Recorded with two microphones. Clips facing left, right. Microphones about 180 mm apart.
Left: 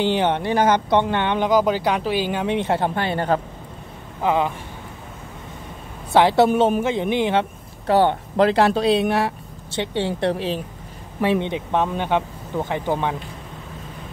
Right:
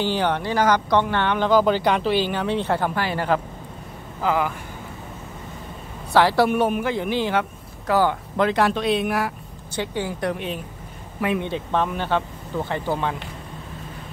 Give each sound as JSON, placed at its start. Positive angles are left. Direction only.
{"t": 0.0, "sound": "speech", "side_deg": 20}
{"t": 6.1, "sound": "speech", "side_deg": 20}